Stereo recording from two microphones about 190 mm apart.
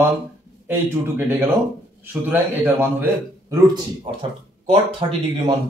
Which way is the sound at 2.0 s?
10° right (ahead or behind).